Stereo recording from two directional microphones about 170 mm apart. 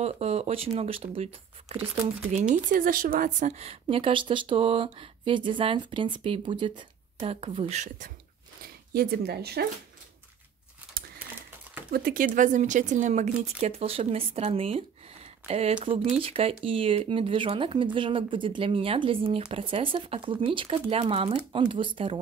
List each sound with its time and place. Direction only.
0.0 s a woman's voice: 40° right (ahead or behind)
2.5 s a woman's voice: 55° right (ahead or behind)
8.9 s speech: 65° right (ahead or behind)
11.9 s a woman's voice: 55° right (ahead or behind); by 22.2 s 30° right (ahead or behind)